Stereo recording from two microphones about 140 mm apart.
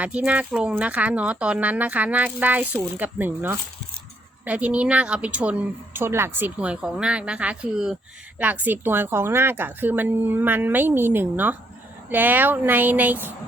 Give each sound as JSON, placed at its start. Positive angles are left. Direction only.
{"t": 0.0, "sound": "speech", "side_deg": -10}